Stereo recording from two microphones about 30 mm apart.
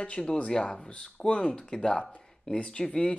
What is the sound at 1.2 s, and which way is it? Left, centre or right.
Speech, left.